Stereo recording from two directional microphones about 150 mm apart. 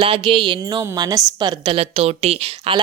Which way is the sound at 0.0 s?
35° right (ahead or behind).